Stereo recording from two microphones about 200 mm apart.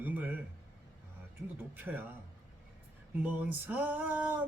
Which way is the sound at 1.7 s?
10° right (ahead or behind).